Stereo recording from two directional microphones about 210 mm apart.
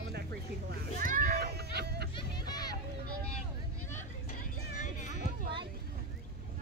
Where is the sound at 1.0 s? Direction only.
40° right (ahead or behind).